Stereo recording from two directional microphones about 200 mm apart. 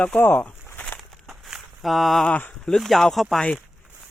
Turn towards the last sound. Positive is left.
turn(degrees=5)  # may be behind; listen again after turning